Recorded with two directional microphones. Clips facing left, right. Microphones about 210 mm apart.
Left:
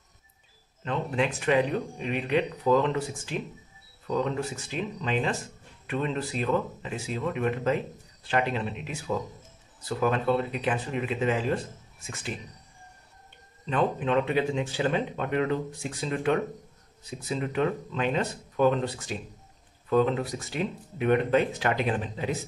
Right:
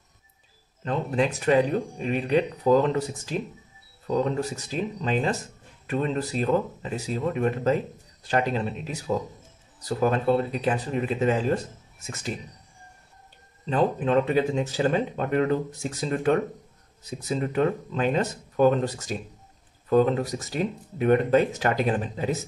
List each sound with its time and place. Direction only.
0.8 s speech: 40° right (ahead or behind)
13.7 s speech: 35° right (ahead or behind)